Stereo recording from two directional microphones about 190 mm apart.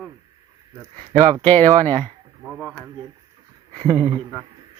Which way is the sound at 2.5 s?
Centre (ahead or behind).